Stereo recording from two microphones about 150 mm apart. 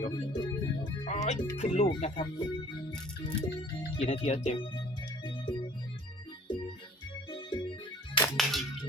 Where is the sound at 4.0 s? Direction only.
45° left (ahead or behind).